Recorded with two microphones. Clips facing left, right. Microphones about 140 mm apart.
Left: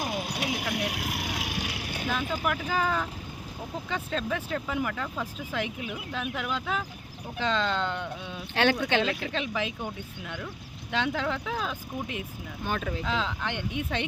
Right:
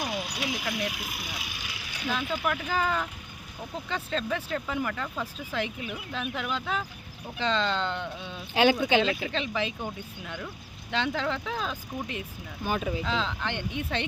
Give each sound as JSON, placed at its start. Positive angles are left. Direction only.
{"t": 0.0, "sound": "a sound", "side_deg": 50}
{"t": 0.7, "sound": "vehicle", "side_deg": 70}
{"t": 2.6, "sound": "speech", "side_deg": 5}
{"t": 8.5, "sound": "speech", "side_deg": -5}
{"t": 9.3, "sound": "speech", "side_deg": 5}
{"t": 12.6, "sound": "speech", "side_deg": -5}
{"t": 13.1, "sound": "speech", "side_deg": 10}